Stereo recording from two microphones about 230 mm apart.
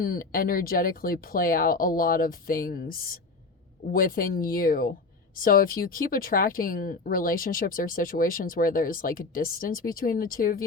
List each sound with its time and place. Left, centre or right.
0.0 s speech: left